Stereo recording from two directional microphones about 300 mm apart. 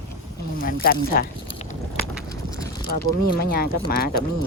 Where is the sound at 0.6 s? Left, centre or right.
Left.